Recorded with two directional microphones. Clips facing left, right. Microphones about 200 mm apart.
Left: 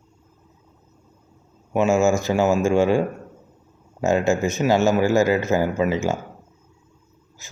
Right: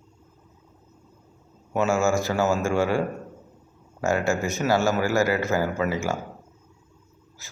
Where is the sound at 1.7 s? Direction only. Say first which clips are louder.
Left 4 dB; 15° left (ahead or behind).